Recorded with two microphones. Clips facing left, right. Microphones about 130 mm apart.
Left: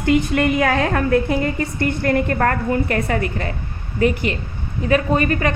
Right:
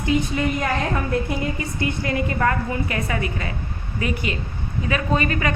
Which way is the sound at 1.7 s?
55° left (ahead or behind).